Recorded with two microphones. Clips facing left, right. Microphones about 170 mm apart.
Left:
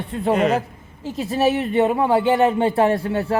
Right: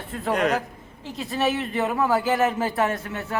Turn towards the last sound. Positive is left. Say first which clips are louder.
# left 9 dB
turn(degrees=35)  # may be behind; listen again after turning